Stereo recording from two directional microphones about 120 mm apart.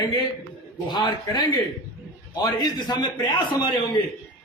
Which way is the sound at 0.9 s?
35° left (ahead or behind).